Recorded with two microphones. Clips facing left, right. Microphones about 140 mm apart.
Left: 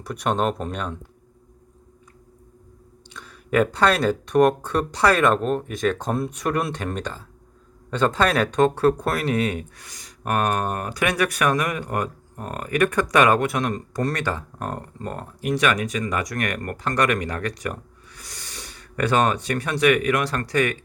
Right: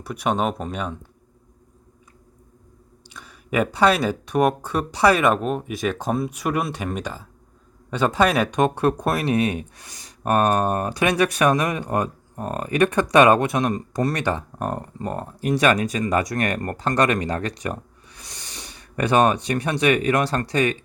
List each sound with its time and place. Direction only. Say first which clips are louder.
0.0 s speech: even; 5° right (ahead or behind)
3.1 s speech: left 3 dB; 10° right (ahead or behind)
15.4 s speech: right 3 dB; 35° right (ahead or behind)